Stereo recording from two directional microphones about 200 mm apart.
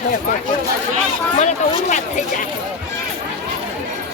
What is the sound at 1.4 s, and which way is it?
Speech, 35° left (ahead or behind).